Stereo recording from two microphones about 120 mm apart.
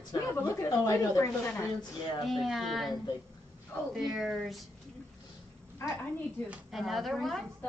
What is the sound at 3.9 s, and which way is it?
Speech, 5° right (ahead or behind).